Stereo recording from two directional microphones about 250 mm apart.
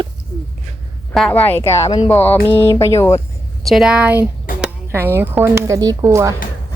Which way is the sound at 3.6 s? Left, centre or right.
Centre.